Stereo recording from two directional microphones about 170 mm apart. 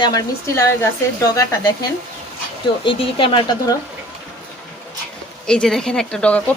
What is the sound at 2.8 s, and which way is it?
Speech, 30° left (ahead or behind).